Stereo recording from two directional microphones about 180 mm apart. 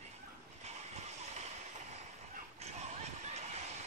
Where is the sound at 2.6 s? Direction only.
35° right (ahead or behind).